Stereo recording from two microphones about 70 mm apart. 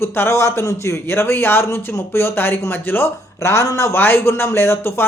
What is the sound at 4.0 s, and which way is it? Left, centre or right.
Speech, left.